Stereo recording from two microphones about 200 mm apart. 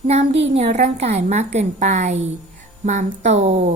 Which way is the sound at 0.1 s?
35° right (ahead or behind).